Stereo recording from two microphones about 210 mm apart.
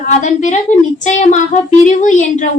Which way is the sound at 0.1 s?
35° left (ahead or behind).